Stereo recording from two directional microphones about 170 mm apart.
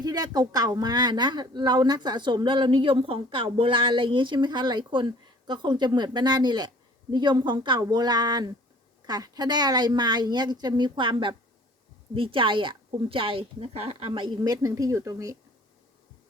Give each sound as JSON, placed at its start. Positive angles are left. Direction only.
{"t": 0.0, "sound": "speech", "side_deg": -25}